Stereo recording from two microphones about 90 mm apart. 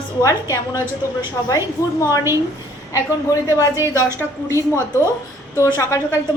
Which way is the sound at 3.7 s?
30° right (ahead or behind).